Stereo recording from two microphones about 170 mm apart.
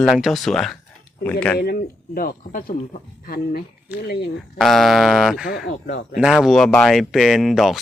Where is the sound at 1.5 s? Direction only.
65° left (ahead or behind).